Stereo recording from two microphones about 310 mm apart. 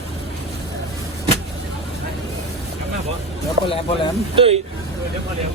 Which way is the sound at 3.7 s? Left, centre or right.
Centre.